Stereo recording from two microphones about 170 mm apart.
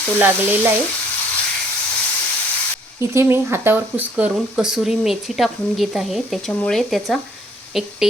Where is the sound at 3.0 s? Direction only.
15° right (ahead or behind).